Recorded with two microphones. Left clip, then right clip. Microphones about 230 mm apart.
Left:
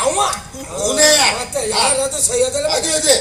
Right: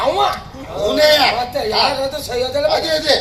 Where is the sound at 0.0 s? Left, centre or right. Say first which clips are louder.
Right 1 dB; left.